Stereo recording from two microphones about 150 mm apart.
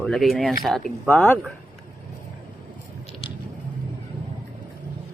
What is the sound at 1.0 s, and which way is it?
Speech, 10° left (ahead or behind).